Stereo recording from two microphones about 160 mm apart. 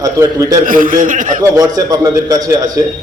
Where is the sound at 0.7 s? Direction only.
55° right (ahead or behind).